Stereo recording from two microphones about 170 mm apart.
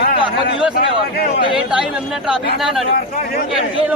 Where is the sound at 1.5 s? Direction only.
5° right (ahead or behind).